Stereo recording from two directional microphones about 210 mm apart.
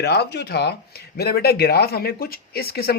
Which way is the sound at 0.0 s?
50° left (ahead or behind).